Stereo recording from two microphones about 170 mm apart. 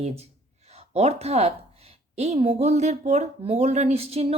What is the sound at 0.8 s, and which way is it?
Speech, 40° right (ahead or behind).